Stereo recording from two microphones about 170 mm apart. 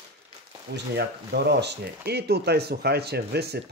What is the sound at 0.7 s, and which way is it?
Speech, 75° right (ahead or behind).